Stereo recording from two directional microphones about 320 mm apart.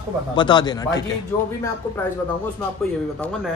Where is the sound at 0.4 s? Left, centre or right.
Centre.